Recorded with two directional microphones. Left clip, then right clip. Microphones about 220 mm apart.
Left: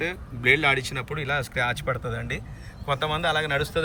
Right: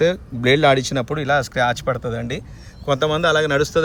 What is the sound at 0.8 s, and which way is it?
Speech, 15° right (ahead or behind).